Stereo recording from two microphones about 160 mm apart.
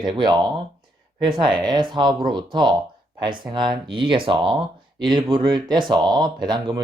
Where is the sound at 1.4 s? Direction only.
30° right (ahead or behind).